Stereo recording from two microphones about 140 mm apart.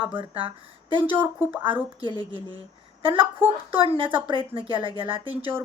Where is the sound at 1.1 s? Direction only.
15° right (ahead or behind).